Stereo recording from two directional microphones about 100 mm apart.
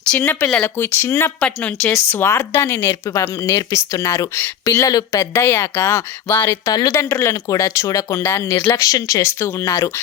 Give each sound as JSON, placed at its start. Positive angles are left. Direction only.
{"t": 0.1, "sound": "speech", "side_deg": 15}
{"t": 1.4, "sound": "speech", "side_deg": 10}
{"t": 1.9, "sound": "speech", "side_deg": 25}
{"t": 6.7, "sound": "speech", "side_deg": 35}